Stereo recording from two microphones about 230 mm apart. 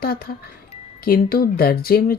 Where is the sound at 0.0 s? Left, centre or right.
Left.